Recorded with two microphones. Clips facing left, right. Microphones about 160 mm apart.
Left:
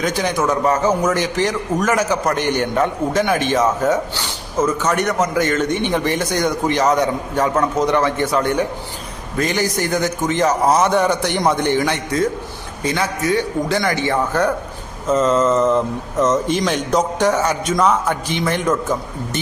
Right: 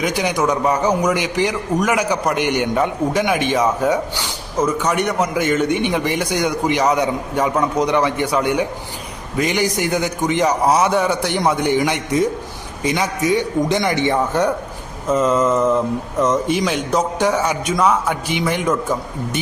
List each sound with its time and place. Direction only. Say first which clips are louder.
0.0 s a man's voice: even; 15° right (ahead or behind)
15.1 s a man's voice: left 1 dB; 10° right (ahead or behind)